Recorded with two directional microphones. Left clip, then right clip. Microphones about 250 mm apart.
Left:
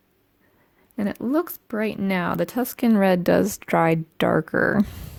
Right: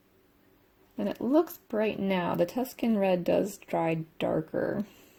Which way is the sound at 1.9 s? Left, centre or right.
Left.